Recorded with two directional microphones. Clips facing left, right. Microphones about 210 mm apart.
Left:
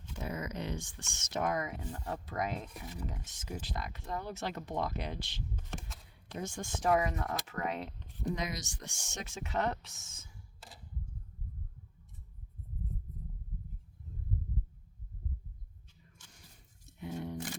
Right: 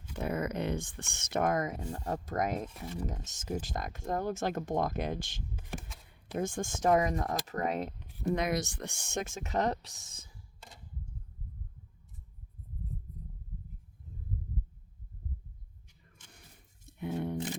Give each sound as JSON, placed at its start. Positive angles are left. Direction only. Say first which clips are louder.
{"t": 0.2, "sound": "speech", "louder": "right 6 dB", "side_deg": -55}
{"t": 5.5, "sound": "a sound", "louder": "right 2 dB", "side_deg": -5}
{"t": 6.3, "sound": "speech", "louder": "right 6 dB", "side_deg": -50}
{"t": 8.3, "sound": "speech", "louder": "right 7 dB", "side_deg": -60}
{"t": 17.0, "sound": "a sound", "louder": "right 5 dB", "side_deg": -60}
{"t": 17.3, "sound": "single-lens reflex camera", "louder": "right 5 dB", "side_deg": -20}